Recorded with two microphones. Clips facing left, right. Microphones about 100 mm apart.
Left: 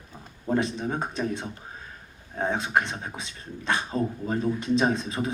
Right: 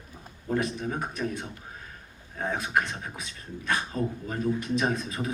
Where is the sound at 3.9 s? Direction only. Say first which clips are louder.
Left 3 dB; 25° left (ahead or behind).